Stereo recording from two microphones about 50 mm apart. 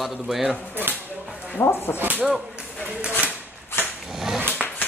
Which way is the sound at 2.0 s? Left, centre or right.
Right.